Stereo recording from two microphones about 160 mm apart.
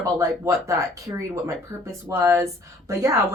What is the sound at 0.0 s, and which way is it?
Speech, 20° right (ahead or behind).